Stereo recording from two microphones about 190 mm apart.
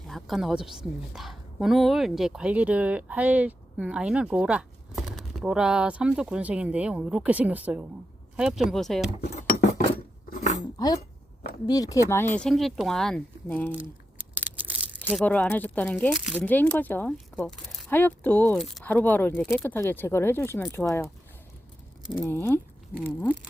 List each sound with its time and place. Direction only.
0.1 s a woman's voice: centre (ahead or behind)
10.2 s cutlery: 40° left (ahead or behind)
10.8 s speech: 20° left (ahead or behind)
14.3 s a sound: 10° right (ahead or behind)
15.2 s speech: 10° left (ahead or behind)
22.2 s speech: 10° left (ahead or behind)